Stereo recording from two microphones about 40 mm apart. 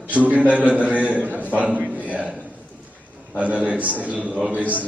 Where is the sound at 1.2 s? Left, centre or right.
Right.